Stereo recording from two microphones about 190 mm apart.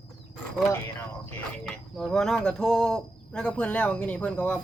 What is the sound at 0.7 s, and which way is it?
Speech, 10° left (ahead or behind).